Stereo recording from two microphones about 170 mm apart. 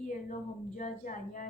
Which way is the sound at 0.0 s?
50° left (ahead or behind).